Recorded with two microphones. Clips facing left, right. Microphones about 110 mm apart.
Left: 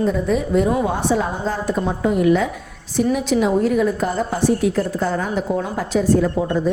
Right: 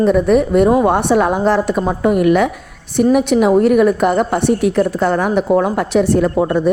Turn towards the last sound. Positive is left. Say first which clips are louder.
# right 5 dB
turn(degrees=-70)  # may be behind; listen again after turning